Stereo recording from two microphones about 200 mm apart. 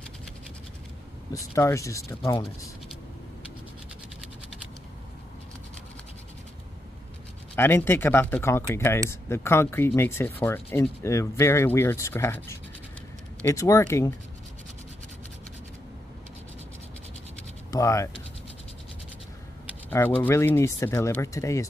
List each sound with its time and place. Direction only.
1.3 s speech: 15° left (ahead or behind)
7.5 s speech: 10° left (ahead or behind)
17.6 s speech: 15° left (ahead or behind)
19.9 s speech: 10° left (ahead or behind)